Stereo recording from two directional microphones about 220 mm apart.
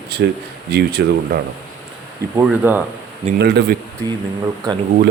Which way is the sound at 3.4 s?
50° right (ahead or behind).